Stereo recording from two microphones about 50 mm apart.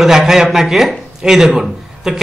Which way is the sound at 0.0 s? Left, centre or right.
Centre.